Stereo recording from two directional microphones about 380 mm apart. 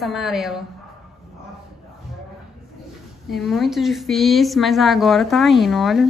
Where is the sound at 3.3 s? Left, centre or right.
Centre.